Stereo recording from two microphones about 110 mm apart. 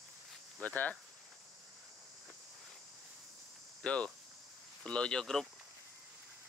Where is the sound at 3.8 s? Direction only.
10° left (ahead or behind).